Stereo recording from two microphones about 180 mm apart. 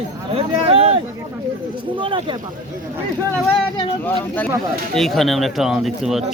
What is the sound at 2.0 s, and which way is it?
Speech, 25° right (ahead or behind).